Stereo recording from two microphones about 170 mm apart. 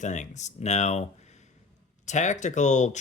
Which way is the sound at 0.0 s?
45° left (ahead or behind).